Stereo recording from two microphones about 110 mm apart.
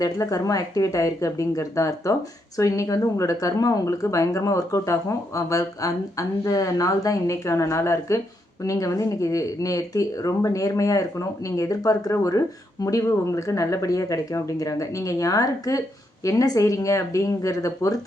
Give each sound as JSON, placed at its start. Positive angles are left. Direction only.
{"t": 0.0, "sound": "speech", "side_deg": 30}